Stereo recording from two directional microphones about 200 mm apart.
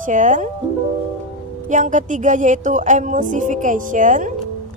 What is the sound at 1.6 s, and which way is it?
A woman's voice, 40° right (ahead or behind).